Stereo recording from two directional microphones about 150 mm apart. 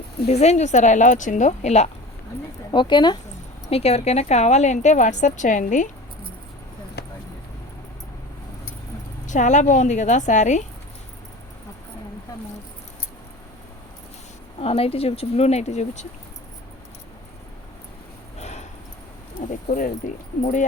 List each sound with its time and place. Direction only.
0.2 s a woman's voice: 45° left (ahead or behind)
2.7 s speech: 30° left (ahead or behind)
3.7 s a woman's voice: 40° left (ahead or behind)
7.0 s vehicle: 90° left
9.2 s a woman's voice: 55° left (ahead or behind)
14.6 s a woman's voice: 40° left (ahead or behind)
18.3 s a sound: 50° left (ahead or behind)
19.5 s speech: 60° left (ahead or behind)